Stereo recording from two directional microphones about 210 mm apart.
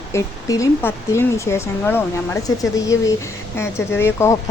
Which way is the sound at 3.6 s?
10° left (ahead or behind).